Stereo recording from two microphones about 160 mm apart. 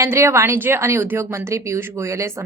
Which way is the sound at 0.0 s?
15° right (ahead or behind).